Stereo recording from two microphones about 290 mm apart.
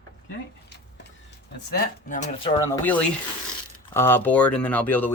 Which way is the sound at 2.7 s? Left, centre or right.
Centre.